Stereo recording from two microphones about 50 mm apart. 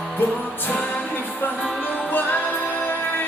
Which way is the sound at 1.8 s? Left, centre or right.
Left.